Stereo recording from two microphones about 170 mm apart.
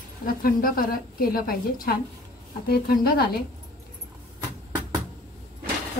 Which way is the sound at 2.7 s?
65° left (ahead or behind).